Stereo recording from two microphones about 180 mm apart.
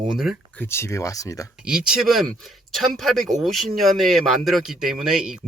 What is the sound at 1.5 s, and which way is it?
Speech, 5° right (ahead or behind).